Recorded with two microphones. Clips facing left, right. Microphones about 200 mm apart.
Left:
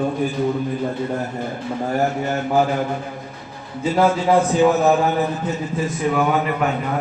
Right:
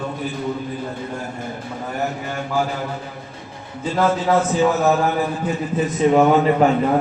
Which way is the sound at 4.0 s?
15° left (ahead or behind).